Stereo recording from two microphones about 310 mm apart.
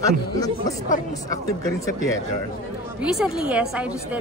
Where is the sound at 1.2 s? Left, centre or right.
Centre.